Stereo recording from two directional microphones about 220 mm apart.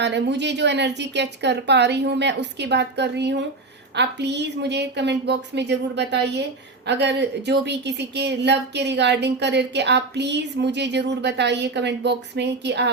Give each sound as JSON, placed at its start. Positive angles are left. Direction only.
{"t": 0.0, "sound": "speech", "side_deg": -50}